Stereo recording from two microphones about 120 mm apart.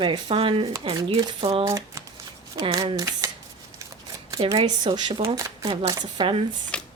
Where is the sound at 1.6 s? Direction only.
25° right (ahead or behind).